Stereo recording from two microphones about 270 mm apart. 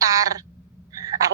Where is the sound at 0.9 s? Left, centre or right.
Centre.